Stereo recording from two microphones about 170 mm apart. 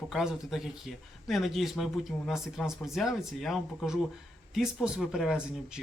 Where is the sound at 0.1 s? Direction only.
Centre (ahead or behind).